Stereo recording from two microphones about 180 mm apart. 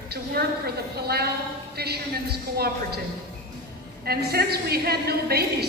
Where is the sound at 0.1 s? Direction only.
60° right (ahead or behind).